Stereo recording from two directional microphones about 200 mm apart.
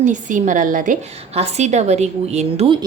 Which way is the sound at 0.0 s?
40° right (ahead or behind).